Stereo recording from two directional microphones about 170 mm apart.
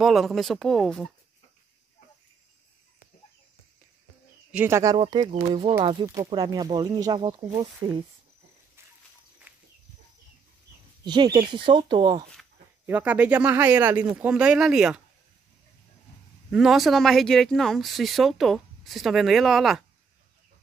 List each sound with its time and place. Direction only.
0.0 s speech: centre (ahead or behind)
4.5 s speech: 10° right (ahead or behind)
4.9 s speech: 25° right (ahead or behind)
6.0 s speech: 20° right (ahead or behind)
9.5 s a sound: 10° right (ahead or behind)
11.1 s speech: 25° right (ahead or behind)
12.8 s speech: 10° right (ahead or behind)
16.4 s speech: centre (ahead or behind)